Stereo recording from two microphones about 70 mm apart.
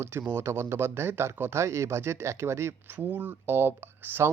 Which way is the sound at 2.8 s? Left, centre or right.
Right.